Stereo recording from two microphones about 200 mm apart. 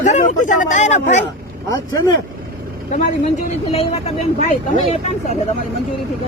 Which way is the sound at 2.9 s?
40° left (ahead or behind).